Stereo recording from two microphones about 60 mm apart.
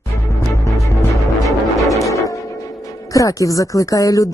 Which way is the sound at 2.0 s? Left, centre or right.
Left.